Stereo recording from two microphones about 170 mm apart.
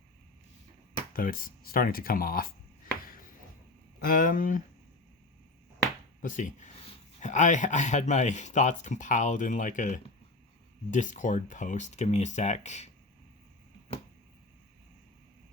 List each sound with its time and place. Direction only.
1.1 s speech: 55° left (ahead or behind)
4.0 s speech: 55° left (ahead or behind)
6.2 s speech: 50° left (ahead or behind)